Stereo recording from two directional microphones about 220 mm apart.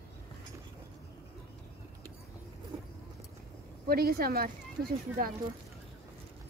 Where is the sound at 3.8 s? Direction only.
45° right (ahead or behind).